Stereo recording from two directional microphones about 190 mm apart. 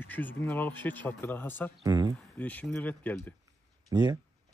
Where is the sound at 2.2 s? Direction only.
10° left (ahead or behind).